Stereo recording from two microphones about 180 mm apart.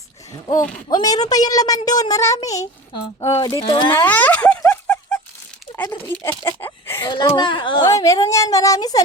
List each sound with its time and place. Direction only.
0.9 s speech: 20° left (ahead or behind)
4.0 s a sound: 10° left (ahead or behind)
5.7 s speech: 10° left (ahead or behind)
7.1 s speech: 25° left (ahead or behind)